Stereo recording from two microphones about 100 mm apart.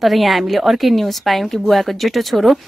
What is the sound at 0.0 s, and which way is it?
A woman's voice, centre (ahead or behind).